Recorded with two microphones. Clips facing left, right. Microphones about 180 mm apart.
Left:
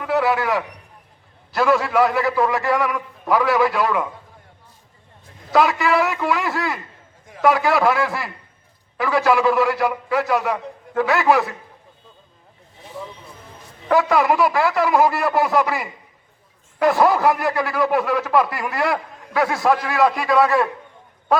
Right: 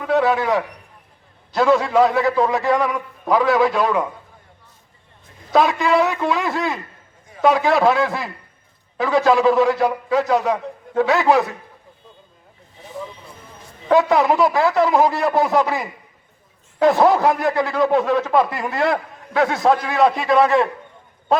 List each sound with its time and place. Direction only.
0.0 s a man's voice: 20° right (ahead or behind)
5.5 s a man's voice: 20° right (ahead or behind)
13.8 s speech: 20° right (ahead or behind)